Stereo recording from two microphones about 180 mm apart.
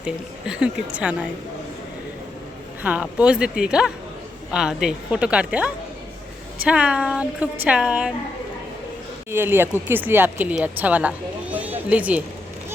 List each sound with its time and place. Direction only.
0.0 s a woman's voice: 5° right (ahead or behind)
2.8 s a woman's voice: 5° right (ahead or behind)
9.3 s speech: 10° right (ahead or behind)